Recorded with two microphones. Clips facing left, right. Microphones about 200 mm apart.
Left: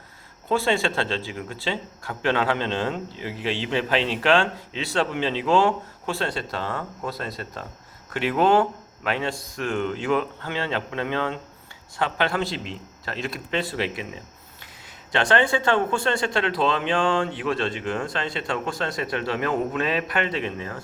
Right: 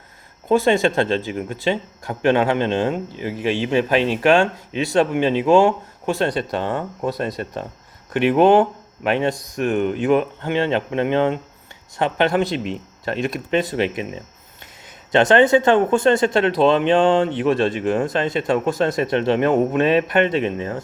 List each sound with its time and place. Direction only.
0.4 s a man's voice: 20° right (ahead or behind)
15.1 s a man's voice: 20° right (ahead or behind)